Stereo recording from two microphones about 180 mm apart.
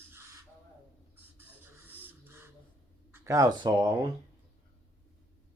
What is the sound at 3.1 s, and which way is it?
Speech, 15° right (ahead or behind).